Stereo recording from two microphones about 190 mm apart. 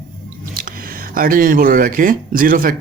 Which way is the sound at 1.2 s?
50° right (ahead or behind).